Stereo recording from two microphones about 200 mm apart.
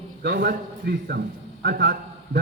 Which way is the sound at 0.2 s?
55° right (ahead or behind).